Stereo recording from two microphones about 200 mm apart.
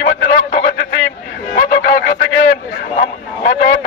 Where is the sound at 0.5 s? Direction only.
55° left (ahead or behind).